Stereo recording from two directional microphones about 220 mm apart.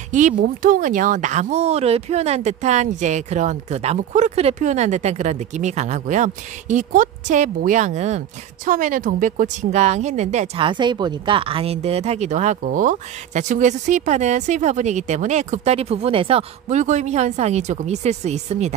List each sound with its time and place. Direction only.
0.4 s speech: 40° right (ahead or behind)